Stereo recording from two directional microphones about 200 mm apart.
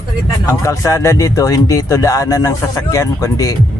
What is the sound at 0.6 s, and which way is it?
Speech, 15° left (ahead or behind).